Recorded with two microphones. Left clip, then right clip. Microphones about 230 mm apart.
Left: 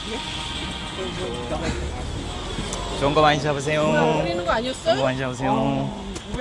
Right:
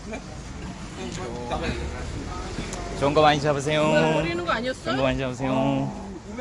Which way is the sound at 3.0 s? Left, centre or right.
Centre.